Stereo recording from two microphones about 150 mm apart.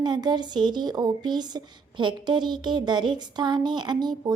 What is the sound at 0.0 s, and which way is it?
Speech, 30° right (ahead or behind).